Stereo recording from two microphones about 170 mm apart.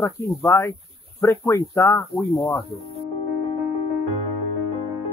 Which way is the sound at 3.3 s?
40° left (ahead or behind).